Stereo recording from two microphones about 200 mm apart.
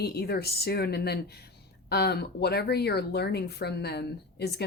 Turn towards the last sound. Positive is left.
turn(degrees=55)  # may be behind; listen again after turning